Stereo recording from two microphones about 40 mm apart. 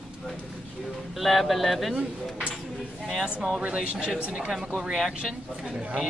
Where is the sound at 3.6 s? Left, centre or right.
Right.